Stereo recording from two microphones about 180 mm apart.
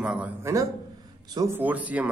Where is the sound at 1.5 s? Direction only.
10° right (ahead or behind).